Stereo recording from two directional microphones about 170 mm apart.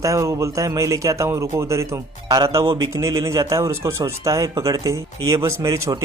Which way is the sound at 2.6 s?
30° right (ahead or behind).